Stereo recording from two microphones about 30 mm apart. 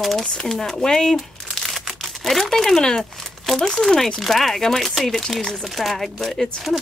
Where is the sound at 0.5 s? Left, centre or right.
Centre.